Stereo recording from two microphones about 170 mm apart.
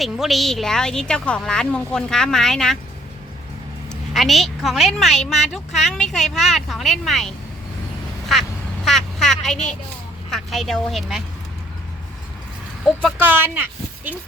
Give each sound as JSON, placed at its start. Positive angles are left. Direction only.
{"t": 0.0, "sound": "a woman's voice", "side_deg": 0}
{"t": 3.8, "sound": "a woman's voice", "side_deg": 0}
{"t": 8.3, "sound": "quack", "side_deg": 0}
{"t": 10.3, "sound": "a woman's voice", "side_deg": 0}
{"t": 13.5, "sound": "a sound", "side_deg": -10}